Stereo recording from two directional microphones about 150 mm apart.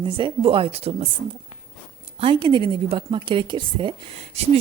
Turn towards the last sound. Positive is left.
turn(degrees=-35)  # may be behind; listen again after turning